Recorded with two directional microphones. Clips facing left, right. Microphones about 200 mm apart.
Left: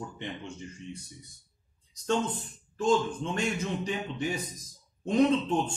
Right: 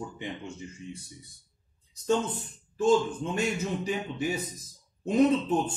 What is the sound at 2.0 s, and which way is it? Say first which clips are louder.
A man's voice: right 2 dB; 10° right (ahead or behind).